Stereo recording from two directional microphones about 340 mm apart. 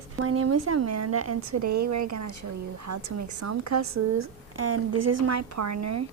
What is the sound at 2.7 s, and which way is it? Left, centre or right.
A woman's voice, right.